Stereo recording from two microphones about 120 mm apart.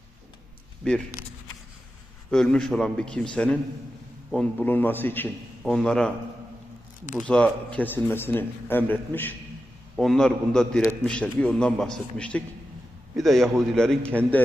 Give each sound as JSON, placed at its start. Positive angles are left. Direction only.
{"t": 0.8, "sound": "a man's voice", "side_deg": 10}
{"t": 2.3, "sound": "a man's voice", "side_deg": 5}
{"t": 5.6, "sound": "a man's voice", "side_deg": 5}
{"t": 7.3, "sound": "a man's voice", "side_deg": 10}
{"t": 9.9, "sound": "a man's voice", "side_deg": 0}